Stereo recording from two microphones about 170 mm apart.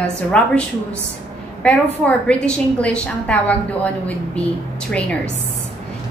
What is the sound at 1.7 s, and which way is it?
A woman's voice, 5° left (ahead or behind).